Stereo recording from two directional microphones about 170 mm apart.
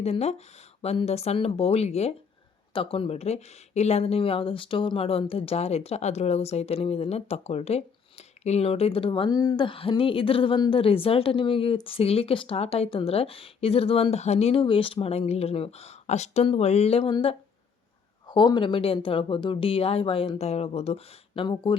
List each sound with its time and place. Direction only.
0.0 s speech: 40° left (ahead or behind)